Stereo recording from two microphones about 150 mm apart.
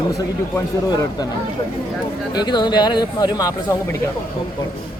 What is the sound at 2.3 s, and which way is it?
Speech, 25° left (ahead or behind).